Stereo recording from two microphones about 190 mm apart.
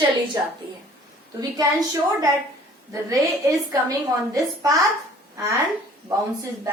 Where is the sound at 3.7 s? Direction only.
20° right (ahead or behind).